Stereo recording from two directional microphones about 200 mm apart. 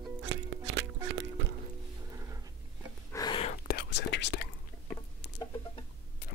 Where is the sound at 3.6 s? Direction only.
55° left (ahead or behind).